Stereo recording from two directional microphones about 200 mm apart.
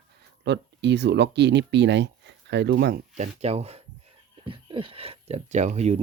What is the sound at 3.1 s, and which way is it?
Speech, 35° right (ahead or behind).